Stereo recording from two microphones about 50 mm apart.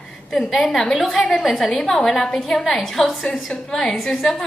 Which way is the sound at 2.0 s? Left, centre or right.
Centre.